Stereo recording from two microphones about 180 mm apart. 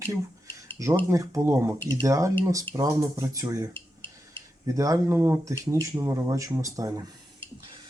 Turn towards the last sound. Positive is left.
turn(degrees=-20)  # may be behind; listen again after turning